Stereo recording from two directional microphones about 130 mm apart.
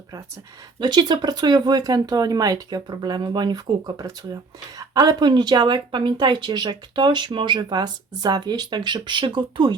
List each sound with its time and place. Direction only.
0.8 s speech: 35° right (ahead or behind)